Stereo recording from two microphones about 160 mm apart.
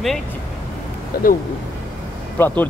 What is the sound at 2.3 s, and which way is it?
Speech, 10° left (ahead or behind).